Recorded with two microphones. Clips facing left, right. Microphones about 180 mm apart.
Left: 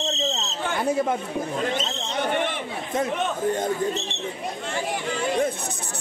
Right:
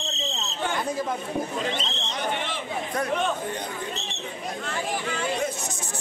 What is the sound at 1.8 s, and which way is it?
Speech, 50° left (ahead or behind).